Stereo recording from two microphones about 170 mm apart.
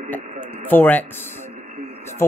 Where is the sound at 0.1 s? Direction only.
10° left (ahead or behind).